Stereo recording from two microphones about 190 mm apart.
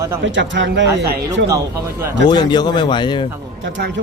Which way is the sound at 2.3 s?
20° left (ahead or behind).